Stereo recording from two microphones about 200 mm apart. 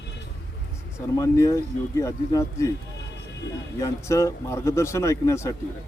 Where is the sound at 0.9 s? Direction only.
15° left (ahead or behind).